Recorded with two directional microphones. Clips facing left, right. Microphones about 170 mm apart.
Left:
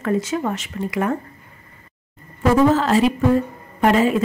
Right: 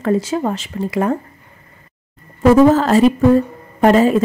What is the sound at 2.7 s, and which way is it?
A woman's voice, 45° right (ahead or behind).